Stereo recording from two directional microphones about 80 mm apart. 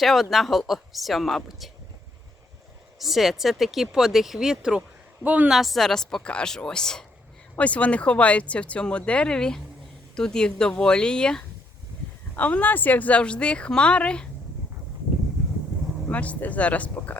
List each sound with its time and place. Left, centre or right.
0.0 s speech: centre
3.0 s speech: centre
5.2 s a woman's voice: right
5.5 s speech: centre
16.0 s speech: centre